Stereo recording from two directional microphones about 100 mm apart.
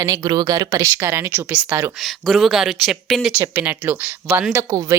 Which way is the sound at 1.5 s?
15° right (ahead or behind).